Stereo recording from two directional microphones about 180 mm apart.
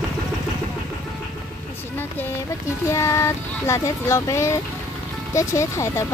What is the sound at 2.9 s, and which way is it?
Speech, 15° left (ahead or behind).